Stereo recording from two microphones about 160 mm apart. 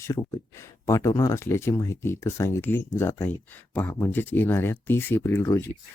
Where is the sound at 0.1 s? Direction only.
20° left (ahead or behind).